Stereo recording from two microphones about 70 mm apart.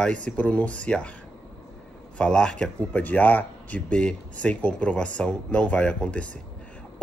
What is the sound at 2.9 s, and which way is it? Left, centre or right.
Speech, left.